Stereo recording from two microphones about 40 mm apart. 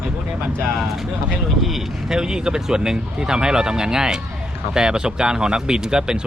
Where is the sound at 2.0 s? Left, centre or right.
Centre.